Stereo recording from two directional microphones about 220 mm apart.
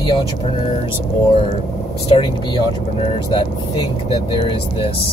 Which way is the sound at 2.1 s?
20° left (ahead or behind).